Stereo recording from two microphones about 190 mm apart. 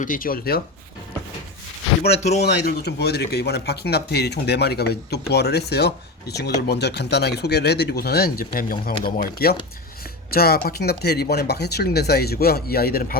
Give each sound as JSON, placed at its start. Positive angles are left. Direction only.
{"t": 0.0, "sound": "speech", "side_deg": 45}
{"t": 2.1, "sound": "speech", "side_deg": 35}
{"t": 2.4, "sound": "speech", "side_deg": 60}